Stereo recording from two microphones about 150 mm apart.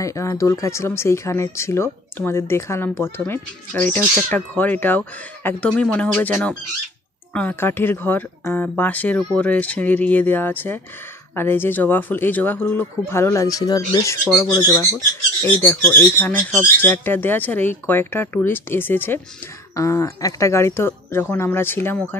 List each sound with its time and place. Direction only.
0.0 s speech: 20° left (ahead or behind)